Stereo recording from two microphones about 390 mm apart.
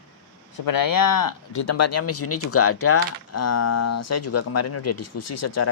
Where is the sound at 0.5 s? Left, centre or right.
Left.